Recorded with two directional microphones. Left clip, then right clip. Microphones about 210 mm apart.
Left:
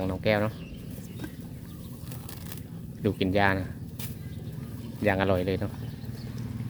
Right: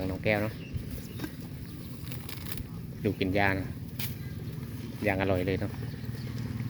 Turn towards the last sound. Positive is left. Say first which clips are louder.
# left 3 dB
turn(degrees=10)  # may be behind; listen again after turning